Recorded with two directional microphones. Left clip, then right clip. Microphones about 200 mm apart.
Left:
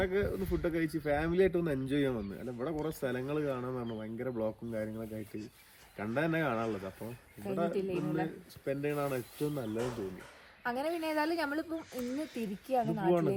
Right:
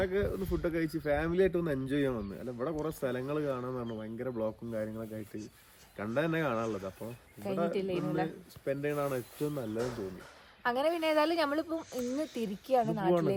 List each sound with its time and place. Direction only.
0.0 s speech: centre (ahead or behind)
6.7 s speech: 10° right (ahead or behind)
7.0 s speech: centre (ahead or behind)
10.6 s speech: 20° right (ahead or behind)
13.1 s speech: centre (ahead or behind)